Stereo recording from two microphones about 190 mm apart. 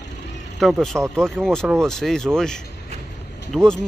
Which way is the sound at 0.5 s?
Centre (ahead or behind).